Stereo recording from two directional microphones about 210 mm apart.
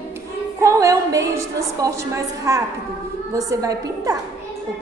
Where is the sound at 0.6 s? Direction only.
15° right (ahead or behind).